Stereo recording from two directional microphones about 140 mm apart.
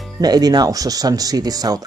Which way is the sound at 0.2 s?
30° right (ahead or behind).